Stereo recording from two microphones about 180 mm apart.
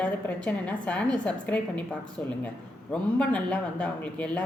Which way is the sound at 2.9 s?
5° left (ahead or behind).